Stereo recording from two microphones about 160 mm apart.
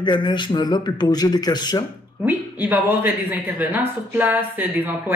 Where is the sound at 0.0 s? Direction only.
30° left (ahead or behind).